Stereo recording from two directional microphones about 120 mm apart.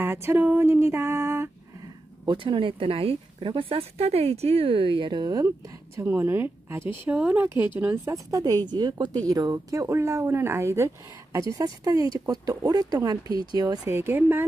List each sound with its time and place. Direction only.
0.0 s a woman's voice: 20° right (ahead or behind)
2.2 s speech: 45° right (ahead or behind)
5.9 s a woman's voice: 20° right (ahead or behind)
13.3 s speech: 45° left (ahead or behind)
13.6 s a woman's voice: 30° right (ahead or behind)